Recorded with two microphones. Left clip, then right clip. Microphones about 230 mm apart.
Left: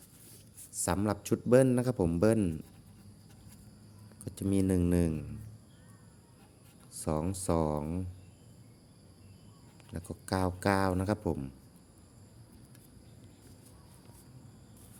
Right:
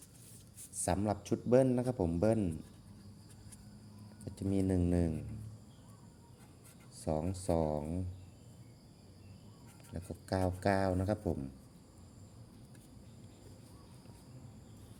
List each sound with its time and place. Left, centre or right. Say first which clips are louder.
0.7 s a man's voice: left 2 dB; left
4.3 s a man's voice: left 4 dB; left
6.9 s a man's voice: left 3 dB; left
9.9 s a man's voice: left 3 dB; left